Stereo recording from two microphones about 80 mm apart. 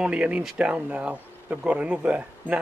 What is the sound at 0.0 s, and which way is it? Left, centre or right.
Speech, centre.